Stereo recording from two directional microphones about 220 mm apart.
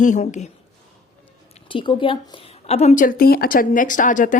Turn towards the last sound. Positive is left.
turn(degrees=35)  # may be behind; listen again after turning